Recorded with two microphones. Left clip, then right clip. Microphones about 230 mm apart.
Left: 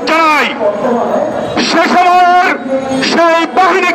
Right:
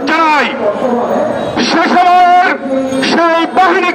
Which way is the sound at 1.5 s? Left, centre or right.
Left.